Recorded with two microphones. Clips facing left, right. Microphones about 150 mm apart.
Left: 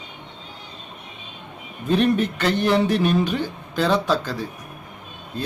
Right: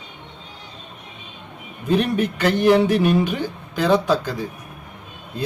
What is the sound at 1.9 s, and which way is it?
Speech, 10° right (ahead or behind).